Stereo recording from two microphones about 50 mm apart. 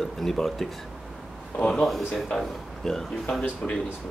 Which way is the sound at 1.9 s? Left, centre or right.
Centre.